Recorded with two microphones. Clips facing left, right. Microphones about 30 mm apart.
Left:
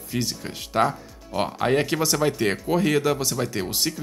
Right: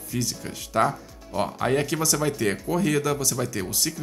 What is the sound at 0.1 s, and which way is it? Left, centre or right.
Speech, left.